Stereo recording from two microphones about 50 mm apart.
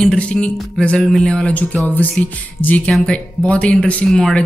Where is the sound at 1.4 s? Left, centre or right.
Left.